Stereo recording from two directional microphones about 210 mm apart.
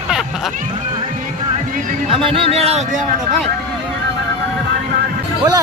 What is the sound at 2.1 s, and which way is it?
Speech, 25° right (ahead or behind).